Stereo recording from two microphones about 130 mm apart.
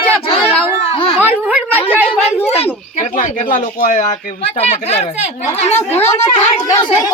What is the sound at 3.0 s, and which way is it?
Speech, 90° left.